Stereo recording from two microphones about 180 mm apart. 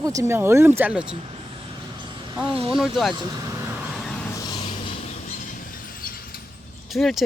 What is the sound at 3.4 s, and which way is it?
Vehicle, 15° right (ahead or behind).